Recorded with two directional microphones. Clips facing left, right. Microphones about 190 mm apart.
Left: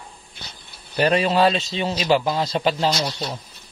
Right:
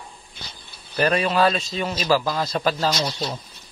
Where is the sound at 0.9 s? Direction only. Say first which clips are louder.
Left 2 dB; 25° left (ahead or behind).